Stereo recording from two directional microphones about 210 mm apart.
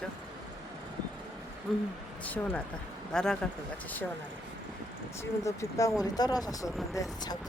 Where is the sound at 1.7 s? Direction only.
Centre (ahead or behind).